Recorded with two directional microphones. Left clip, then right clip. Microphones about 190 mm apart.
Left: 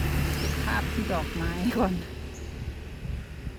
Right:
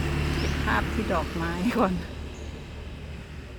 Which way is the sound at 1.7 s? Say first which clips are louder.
Right 2 dB; centre (ahead or behind).